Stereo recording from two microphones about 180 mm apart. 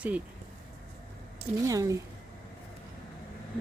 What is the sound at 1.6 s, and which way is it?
Speech, 15° right (ahead or behind).